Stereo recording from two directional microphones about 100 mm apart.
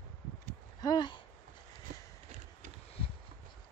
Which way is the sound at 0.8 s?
45° left (ahead or behind).